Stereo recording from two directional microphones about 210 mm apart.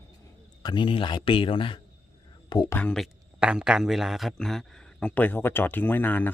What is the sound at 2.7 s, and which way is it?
Speech, 5° left (ahead or behind).